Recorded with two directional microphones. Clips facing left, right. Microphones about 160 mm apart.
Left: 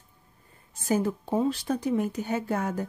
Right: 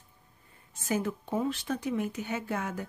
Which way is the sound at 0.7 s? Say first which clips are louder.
Left 5 dB; 35° left (ahead or behind).